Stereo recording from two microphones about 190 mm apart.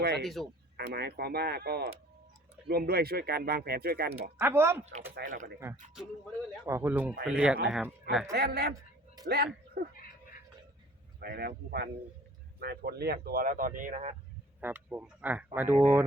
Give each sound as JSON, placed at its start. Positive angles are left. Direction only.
{"t": 0.2, "sound": "speech", "side_deg": 0}
{"t": 0.8, "sound": "speech", "side_deg": -60}
{"t": 4.4, "sound": "speech", "side_deg": -10}
{"t": 5.2, "sound": "speech", "side_deg": -40}
{"t": 5.9, "sound": "speech", "side_deg": -5}
{"t": 8.4, "sound": "speech", "side_deg": -55}
{"t": 11.2, "sound": "speech", "side_deg": -55}
{"t": 14.6, "sound": "speech", "side_deg": -10}